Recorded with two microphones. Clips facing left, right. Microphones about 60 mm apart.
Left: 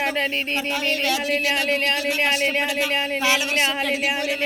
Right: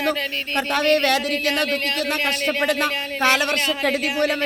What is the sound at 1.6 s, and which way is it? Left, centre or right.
Speech, left.